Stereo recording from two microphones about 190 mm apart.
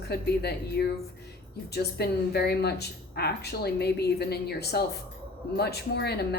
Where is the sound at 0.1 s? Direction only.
60° left (ahead or behind).